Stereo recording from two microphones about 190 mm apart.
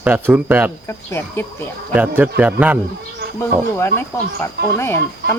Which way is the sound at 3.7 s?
10° left (ahead or behind).